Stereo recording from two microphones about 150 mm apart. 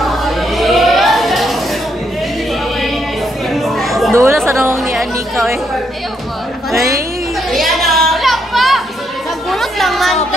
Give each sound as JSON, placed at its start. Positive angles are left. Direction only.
{"t": 0.0, "sound": "music", "side_deg": 0}
{"t": 3.5, "sound": "chatter", "side_deg": 0}
{"t": 4.1, "sound": "chatter", "side_deg": -15}
{"t": 4.8, "sound": "chatter", "side_deg": 0}
{"t": 7.5, "sound": "a sound", "side_deg": 0}
{"t": 9.5, "sound": "chatter", "side_deg": 0}